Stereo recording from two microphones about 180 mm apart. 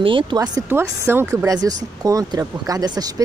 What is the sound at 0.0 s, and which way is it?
Speech, 25° right (ahead or behind).